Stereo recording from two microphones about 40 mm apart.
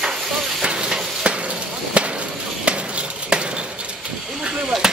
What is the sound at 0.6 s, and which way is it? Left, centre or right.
Vehicle, centre.